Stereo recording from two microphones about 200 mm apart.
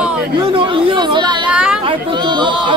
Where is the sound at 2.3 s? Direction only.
25° right (ahead or behind).